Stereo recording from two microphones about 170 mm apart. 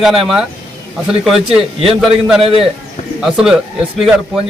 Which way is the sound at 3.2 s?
5° right (ahead or behind).